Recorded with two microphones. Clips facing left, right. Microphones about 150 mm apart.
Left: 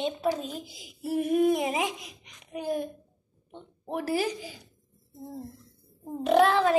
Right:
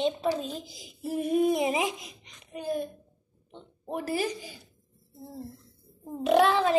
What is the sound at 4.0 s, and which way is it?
Speech, 5° left (ahead or behind).